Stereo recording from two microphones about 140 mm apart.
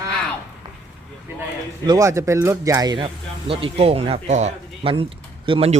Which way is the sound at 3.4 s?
45° right (ahead or behind).